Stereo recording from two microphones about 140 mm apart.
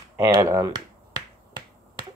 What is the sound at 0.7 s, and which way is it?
Finger snapping, 30° right (ahead or behind).